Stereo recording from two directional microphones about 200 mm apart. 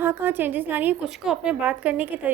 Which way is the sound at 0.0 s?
10° right (ahead or behind).